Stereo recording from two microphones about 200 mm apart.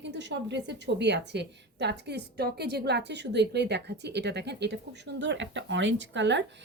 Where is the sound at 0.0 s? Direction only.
60° right (ahead or behind).